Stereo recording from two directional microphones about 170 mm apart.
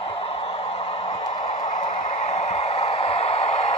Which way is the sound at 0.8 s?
35° left (ahead or behind).